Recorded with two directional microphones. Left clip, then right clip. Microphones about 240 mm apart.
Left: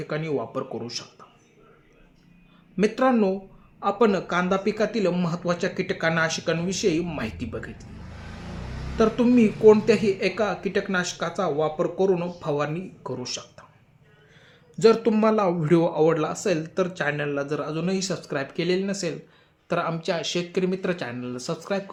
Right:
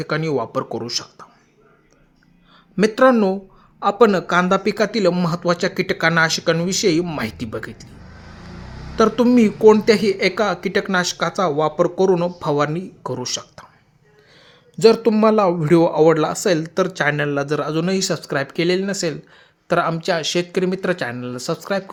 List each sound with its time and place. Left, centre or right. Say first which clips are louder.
0.0 s speech: right 7 dB; right
2.7 s speech: right 7 dB; right
9.0 s speech: right 5 dB; right
14.8 s speech: right 5 dB; right